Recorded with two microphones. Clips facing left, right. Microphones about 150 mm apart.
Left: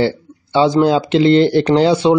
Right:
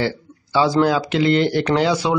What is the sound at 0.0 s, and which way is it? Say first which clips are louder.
Speech: left 6 dB; 25° left (ahead or behind).